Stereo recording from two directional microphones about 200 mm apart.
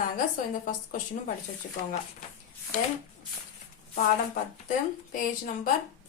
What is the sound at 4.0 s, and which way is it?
Speech, 40° left (ahead or behind).